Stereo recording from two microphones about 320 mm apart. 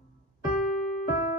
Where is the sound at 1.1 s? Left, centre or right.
Left.